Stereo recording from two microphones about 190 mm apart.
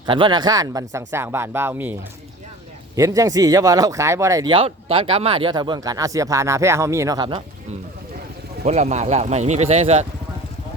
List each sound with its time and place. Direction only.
0.0 s speech: 25° right (ahead or behind)
8.6 s speech: 35° right (ahead or behind)